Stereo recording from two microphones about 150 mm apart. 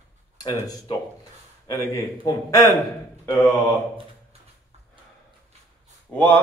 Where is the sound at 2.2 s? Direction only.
25° left (ahead or behind).